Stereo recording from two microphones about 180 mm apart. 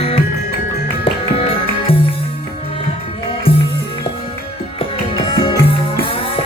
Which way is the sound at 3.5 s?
30° left (ahead or behind).